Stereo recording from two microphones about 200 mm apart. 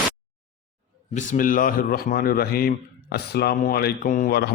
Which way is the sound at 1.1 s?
40° left (ahead or behind).